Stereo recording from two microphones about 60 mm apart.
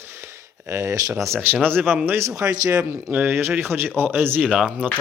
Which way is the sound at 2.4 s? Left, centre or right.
Right.